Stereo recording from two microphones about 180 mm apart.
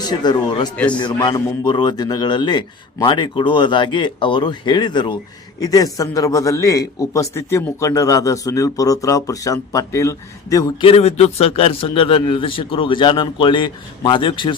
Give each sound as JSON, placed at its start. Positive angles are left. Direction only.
{"t": 0.0, "sound": "a man's voice", "side_deg": 25}